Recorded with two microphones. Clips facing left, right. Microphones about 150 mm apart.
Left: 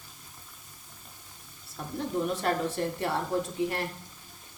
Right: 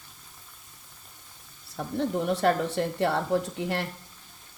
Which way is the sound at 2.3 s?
70° right (ahead or behind).